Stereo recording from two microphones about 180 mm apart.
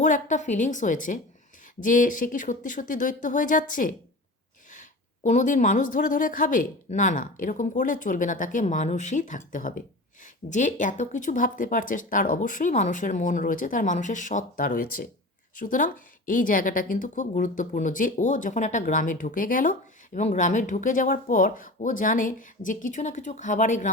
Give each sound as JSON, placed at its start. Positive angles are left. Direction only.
{"t": 0.0, "sound": "speech", "side_deg": 45}